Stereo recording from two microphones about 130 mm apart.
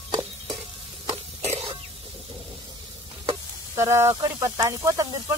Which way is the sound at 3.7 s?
20° right (ahead or behind).